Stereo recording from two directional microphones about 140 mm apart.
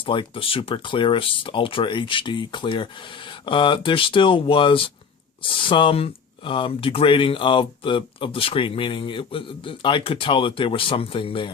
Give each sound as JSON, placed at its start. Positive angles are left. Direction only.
{"t": 0.0, "sound": "speech", "side_deg": 40}